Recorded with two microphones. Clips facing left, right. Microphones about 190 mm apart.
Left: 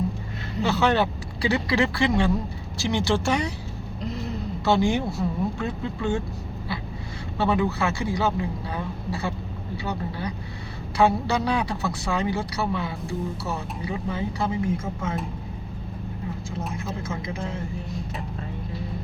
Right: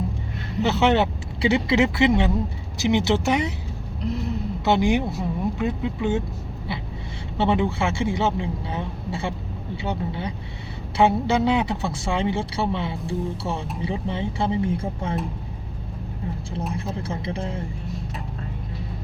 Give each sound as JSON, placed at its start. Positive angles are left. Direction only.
{"t": 0.6, "sound": "speech", "side_deg": -20}
{"t": 4.0, "sound": "a sound", "side_deg": 0}
{"t": 4.6, "sound": "speech", "side_deg": -20}
{"t": 7.3, "sound": "speech", "side_deg": -25}
{"t": 16.7, "sound": "speech", "side_deg": -30}